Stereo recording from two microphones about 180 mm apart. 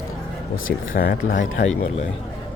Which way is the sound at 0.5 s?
90° left.